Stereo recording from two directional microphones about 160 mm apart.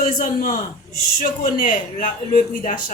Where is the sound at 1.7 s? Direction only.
50° left (ahead or behind).